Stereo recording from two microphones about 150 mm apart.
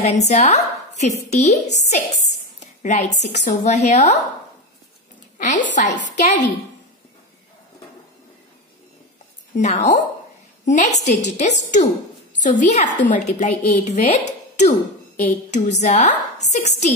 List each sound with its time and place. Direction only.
0.0 s a woman's voice: 50° left (ahead or behind)
5.4 s a woman's voice: 55° left (ahead or behind)
9.6 s a woman's voice: 50° left (ahead or behind)